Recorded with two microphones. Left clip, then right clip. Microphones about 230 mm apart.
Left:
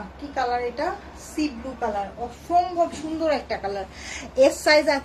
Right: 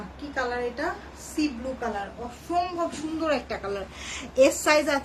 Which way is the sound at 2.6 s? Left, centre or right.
Centre.